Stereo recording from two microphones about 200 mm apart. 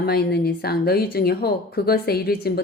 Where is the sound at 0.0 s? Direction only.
50° left (ahead or behind).